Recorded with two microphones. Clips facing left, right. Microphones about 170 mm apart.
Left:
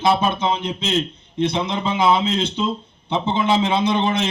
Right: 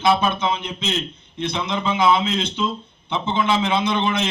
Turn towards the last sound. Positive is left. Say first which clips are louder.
# left 2 dB
turn(degrees=35)  # may be behind; listen again after turning